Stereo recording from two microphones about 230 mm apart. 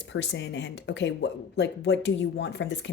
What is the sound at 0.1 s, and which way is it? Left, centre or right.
A woman's voice, left.